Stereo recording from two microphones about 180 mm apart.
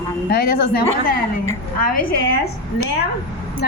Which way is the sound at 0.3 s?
60° left (ahead or behind).